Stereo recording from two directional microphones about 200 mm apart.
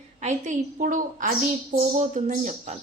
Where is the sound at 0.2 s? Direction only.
35° right (ahead or behind).